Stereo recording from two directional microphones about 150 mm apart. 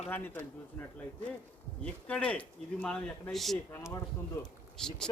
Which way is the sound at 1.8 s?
10° left (ahead or behind).